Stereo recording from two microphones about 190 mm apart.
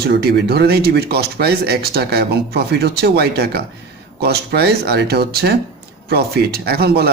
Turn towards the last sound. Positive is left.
turn(degrees=-60)  # may be behind; listen again after turning